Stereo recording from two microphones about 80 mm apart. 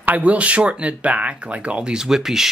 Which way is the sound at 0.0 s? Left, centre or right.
Centre.